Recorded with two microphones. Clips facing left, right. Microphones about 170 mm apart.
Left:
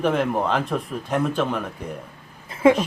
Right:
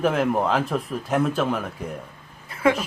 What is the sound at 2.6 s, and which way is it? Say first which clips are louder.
Speech: left 4 dB; 30° left (ahead or behind).